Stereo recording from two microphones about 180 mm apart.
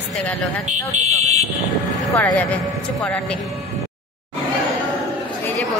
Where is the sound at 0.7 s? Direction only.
40° right (ahead or behind).